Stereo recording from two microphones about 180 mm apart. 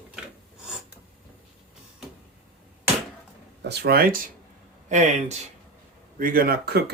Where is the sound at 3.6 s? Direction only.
65° right (ahead or behind).